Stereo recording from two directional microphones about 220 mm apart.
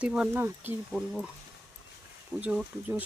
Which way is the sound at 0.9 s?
5° left (ahead or behind).